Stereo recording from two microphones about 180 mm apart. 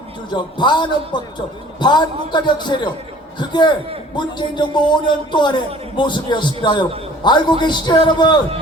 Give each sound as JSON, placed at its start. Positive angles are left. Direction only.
{"t": 0.3, "sound": "a man's voice", "side_deg": 25}